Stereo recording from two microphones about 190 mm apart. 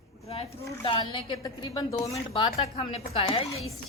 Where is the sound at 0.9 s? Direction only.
25° left (ahead or behind).